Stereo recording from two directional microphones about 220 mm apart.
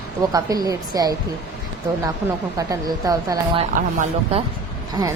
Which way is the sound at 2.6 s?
15° right (ahead or behind).